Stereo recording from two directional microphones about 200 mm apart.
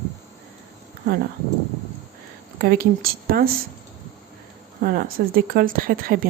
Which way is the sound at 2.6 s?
50° right (ahead or behind).